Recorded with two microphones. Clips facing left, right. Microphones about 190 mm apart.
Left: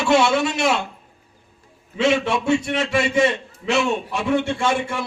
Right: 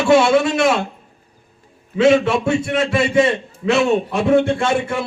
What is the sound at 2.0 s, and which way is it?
A man's voice, 55° right (ahead or behind).